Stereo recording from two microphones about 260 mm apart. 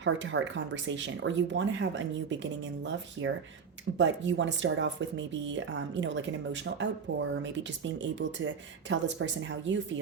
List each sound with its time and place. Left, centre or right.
0.0 s speech: right